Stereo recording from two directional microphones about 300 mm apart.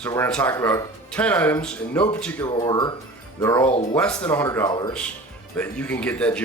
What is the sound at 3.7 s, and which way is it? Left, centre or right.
Speech, left.